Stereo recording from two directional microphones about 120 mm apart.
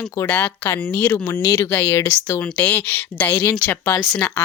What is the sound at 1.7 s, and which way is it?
Speech, 15° left (ahead or behind).